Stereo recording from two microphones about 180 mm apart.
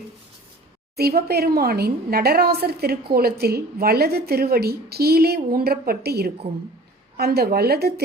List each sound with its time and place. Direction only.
0.9 s a woman's voice: 60° right (ahead or behind)